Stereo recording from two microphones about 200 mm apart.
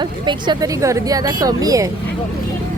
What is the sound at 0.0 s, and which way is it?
Speech, 20° right (ahead or behind).